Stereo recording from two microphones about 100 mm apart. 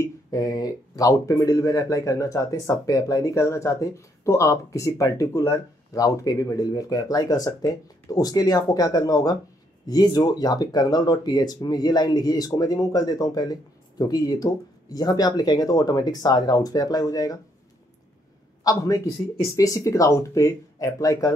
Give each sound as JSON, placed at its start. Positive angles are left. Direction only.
{"t": 0.0, "sound": "speech", "side_deg": 35}
{"t": 18.6, "sound": "speech", "side_deg": 35}